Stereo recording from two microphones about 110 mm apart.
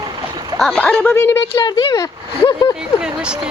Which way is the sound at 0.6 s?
5° left (ahead or behind).